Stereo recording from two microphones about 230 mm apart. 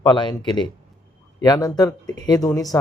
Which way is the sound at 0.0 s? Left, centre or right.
Centre.